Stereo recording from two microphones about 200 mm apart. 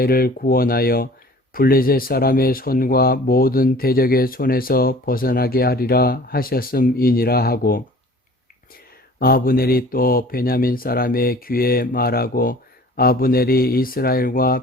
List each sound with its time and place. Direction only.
0.0 s speech: 50° left (ahead or behind)
9.1 s speech: 50° left (ahead or behind)